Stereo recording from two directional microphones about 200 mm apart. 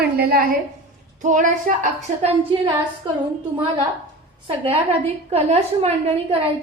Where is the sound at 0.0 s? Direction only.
50° right (ahead or behind).